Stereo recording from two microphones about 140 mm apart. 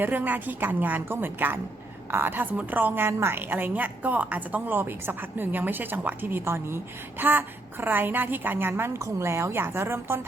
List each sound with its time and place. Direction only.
0.0 s a woman's voice: 15° right (ahead or behind)